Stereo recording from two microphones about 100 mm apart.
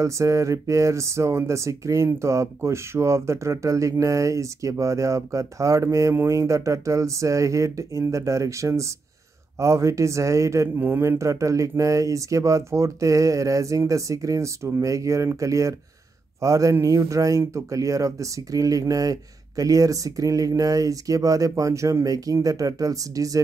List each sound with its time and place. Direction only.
0.0 s speech: 30° right (ahead or behind)